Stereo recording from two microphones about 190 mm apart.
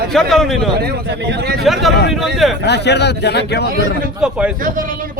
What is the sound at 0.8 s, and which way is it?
Speech, 60° right (ahead or behind).